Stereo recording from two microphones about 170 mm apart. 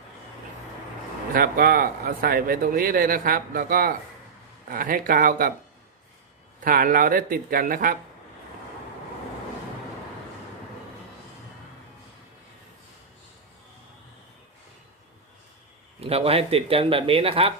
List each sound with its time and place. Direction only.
1.3 s speech: 60° right (ahead or behind)
6.6 s speech: 55° right (ahead or behind)
16.0 s speech: 35° right (ahead or behind)